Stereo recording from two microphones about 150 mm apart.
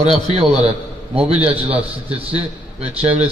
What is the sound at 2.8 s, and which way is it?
Speech, 40° right (ahead or behind).